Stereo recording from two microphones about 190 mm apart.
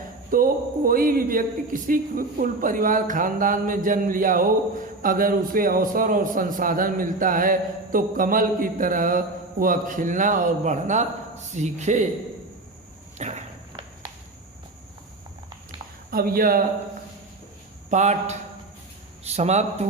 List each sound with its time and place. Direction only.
0.3 s a man's voice: 50° right (ahead or behind)
13.1 s walk: 35° right (ahead or behind)
16.0 s a man's voice: 50° right (ahead or behind)
17.9 s speech: 35° right (ahead or behind)